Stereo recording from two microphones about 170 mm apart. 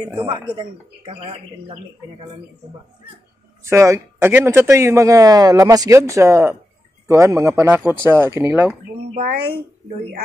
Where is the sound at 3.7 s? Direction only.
15° right (ahead or behind).